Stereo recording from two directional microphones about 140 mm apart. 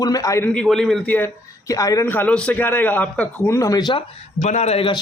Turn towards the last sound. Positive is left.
turn(degrees=40)  # may be behind; listen again after turning